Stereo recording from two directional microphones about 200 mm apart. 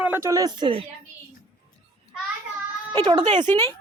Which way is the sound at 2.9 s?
20° right (ahead or behind).